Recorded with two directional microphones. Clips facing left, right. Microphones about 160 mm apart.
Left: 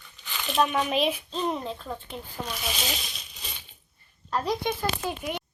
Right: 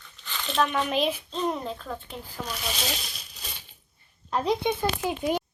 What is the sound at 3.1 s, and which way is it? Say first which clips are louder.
Crushing: even; centre (ahead or behind).